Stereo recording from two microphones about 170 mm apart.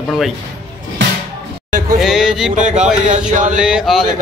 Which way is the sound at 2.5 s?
45° right (ahead or behind).